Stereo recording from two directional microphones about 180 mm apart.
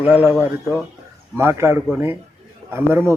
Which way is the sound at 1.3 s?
15° right (ahead or behind).